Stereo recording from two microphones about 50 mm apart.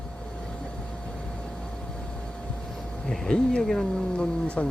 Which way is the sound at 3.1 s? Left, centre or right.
Centre.